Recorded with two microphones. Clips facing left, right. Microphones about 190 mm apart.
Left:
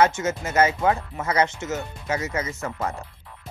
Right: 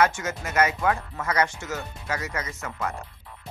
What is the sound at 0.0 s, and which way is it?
Speech, 25° left (ahead or behind).